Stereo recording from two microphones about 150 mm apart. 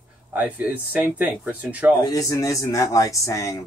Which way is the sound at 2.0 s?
20° left (ahead or behind).